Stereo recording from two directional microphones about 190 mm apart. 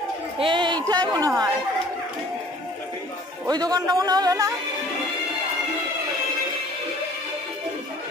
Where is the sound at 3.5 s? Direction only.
20° right (ahead or behind).